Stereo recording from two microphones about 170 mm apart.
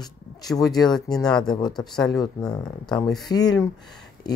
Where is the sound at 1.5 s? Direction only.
25° left (ahead or behind).